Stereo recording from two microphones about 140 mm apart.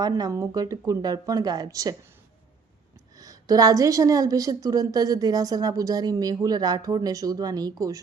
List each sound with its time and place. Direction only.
0.0 s a woman's voice: 25° right (ahead or behind)
3.2 s a woman's voice: 25° right (ahead or behind)